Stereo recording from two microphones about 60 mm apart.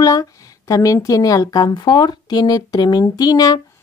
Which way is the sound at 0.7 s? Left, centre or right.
Left.